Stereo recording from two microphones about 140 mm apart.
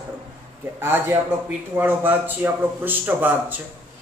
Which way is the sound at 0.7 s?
15° right (ahead or behind).